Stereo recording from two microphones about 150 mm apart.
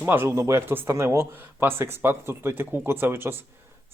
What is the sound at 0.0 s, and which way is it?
Speech, 15° right (ahead or behind).